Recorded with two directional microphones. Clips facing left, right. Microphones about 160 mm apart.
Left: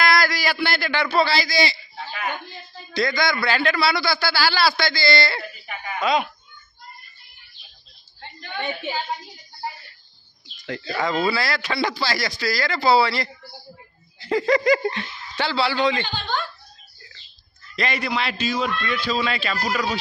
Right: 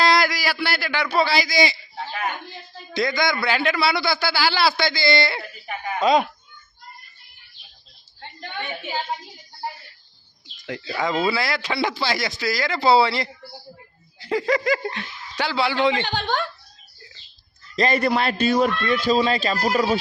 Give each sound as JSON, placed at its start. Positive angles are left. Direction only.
{"t": 0.0, "sound": "a sound", "side_deg": -25}
{"t": 0.3, "sound": "a man's voice", "side_deg": -5}
{"t": 2.9, "sound": "speech", "side_deg": -20}
{"t": 5.6, "sound": "chuckle", "side_deg": -40}
{"t": 10.7, "sound": "speech", "side_deg": -15}
{"t": 14.2, "sound": "speech", "side_deg": -10}
{"t": 16.0, "sound": "speech", "side_deg": -70}
{"t": 17.7, "sound": "a man's voice", "side_deg": -45}
{"t": 18.8, "sound": "speech", "side_deg": -40}